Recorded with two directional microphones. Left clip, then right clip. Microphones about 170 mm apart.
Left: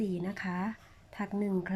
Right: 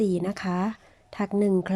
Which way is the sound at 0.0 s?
25° right (ahead or behind).